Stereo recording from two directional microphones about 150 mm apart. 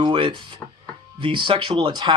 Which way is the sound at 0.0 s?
35° right (ahead or behind).